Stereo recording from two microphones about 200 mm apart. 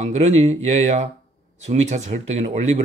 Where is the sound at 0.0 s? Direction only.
35° right (ahead or behind).